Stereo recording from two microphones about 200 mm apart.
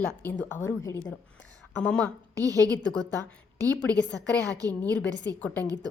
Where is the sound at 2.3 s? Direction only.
15° right (ahead or behind).